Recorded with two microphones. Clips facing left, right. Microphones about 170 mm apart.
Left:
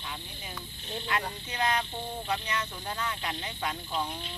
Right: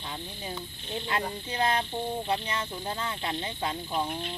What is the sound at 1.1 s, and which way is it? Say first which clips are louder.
Speech: right 3 dB; 30° right (ahead or behind).